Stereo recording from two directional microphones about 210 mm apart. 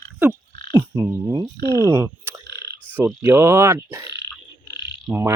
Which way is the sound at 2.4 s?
50° right (ahead or behind).